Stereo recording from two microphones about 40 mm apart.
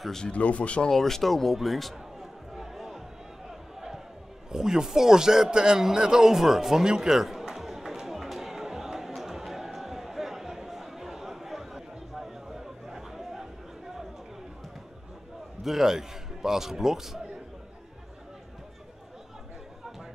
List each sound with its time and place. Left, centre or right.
0.3 s speech: left
0.8 s speech: centre
2.5 s music: centre
4.5 s a sound: centre
15.6 s a man's voice: centre